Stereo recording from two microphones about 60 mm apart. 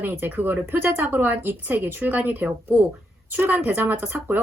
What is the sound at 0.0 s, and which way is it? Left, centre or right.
A woman's voice, right.